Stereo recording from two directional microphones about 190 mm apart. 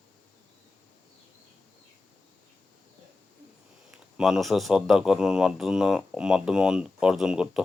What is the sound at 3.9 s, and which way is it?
Speech, centre (ahead or behind).